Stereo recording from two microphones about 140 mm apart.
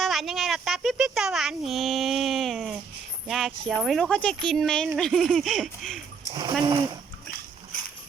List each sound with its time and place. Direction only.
0.0 s a child's voice: centre (ahead or behind)
6.6 s speech: 30° right (ahead or behind)